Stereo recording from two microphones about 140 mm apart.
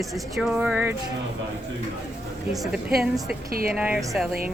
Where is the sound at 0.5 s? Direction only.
15° right (ahead or behind).